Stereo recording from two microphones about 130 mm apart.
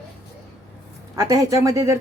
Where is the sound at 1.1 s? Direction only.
25° right (ahead or behind).